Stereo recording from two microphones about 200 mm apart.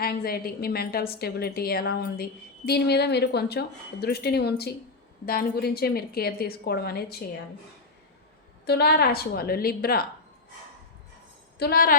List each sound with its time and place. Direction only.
0.0 s a woman's voice: 50° left (ahead or behind)
8.6 s a woman's voice: 55° left (ahead or behind)
11.6 s a woman's voice: 45° left (ahead or behind)